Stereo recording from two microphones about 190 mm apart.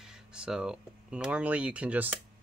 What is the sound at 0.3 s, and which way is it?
Speech, 5° right (ahead or behind).